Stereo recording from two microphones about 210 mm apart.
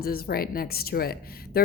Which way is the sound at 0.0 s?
45° left (ahead or behind).